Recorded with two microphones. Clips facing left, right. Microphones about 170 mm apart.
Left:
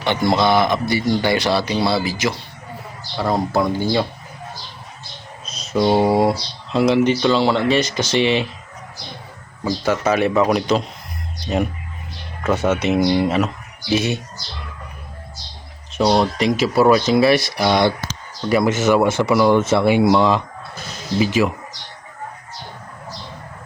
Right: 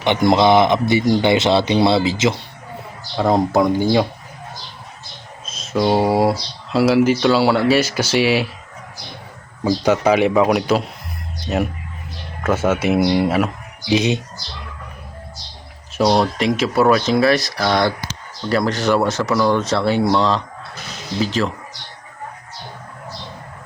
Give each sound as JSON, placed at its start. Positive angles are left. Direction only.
{"t": 0.0, "sound": "speech", "side_deg": -20}
{"t": 5.5, "sound": "speech", "side_deg": 0}
{"t": 9.6, "sound": "speech", "side_deg": -15}
{"t": 16.0, "sound": "speech", "side_deg": 0}
{"t": 17.4, "sound": "speech", "side_deg": 20}
{"t": 18.4, "sound": "speech", "side_deg": 5}